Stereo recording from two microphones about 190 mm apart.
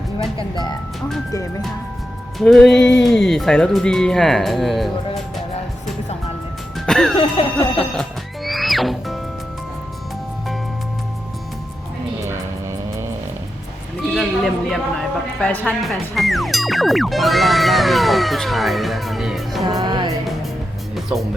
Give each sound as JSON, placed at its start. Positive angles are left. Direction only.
{"t": 2.4, "sound": "speech", "side_deg": 0}
{"t": 6.7, "sound": "music", "side_deg": 5}
{"t": 7.2, "sound": "a sound", "side_deg": 30}
{"t": 8.4, "sound": "music", "side_deg": 0}
{"t": 12.2, "sound": "vehicle", "side_deg": -15}
{"t": 14.1, "sound": "speech", "side_deg": 0}
{"t": 19.6, "sound": "music", "side_deg": -20}
{"t": 20.9, "sound": "music", "side_deg": 0}